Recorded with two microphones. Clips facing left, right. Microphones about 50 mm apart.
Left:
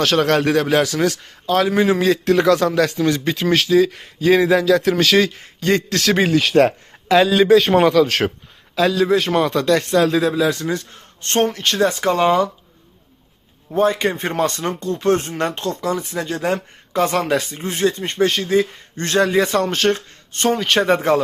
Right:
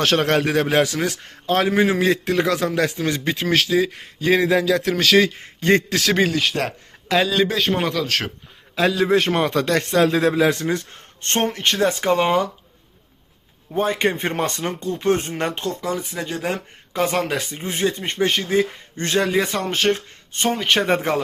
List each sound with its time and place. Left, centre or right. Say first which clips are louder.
0.0 s speech: left 2 dB; right
3.4 s speech: left 3 dB; centre
3.8 s speech: left 5 dB; centre
4.2 s speech: left 3 dB; centre
5.4 s a man's voice: right 1 dB; right
5.9 s speech: left 2 dB; centre
7.3 s speech: left 7 dB; centre
8.0 s speech: left 5 dB; centre
8.7 s a man's voice: left 2 dB; right
13.7 s speech: left 3 dB; right